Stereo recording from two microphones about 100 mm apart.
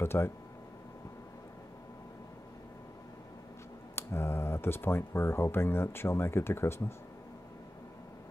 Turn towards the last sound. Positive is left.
turn(degrees=25)  # may be behind; listen again after turning